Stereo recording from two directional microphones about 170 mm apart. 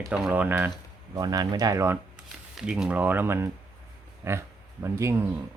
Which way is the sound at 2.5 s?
5° right (ahead or behind).